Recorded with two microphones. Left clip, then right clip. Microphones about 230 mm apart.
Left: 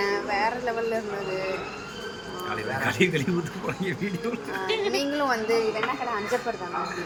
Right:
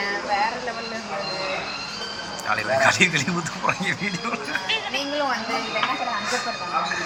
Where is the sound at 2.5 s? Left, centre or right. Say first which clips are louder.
Right 9 dB; centre.